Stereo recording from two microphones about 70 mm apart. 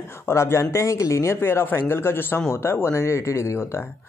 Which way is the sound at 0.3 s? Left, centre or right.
Left.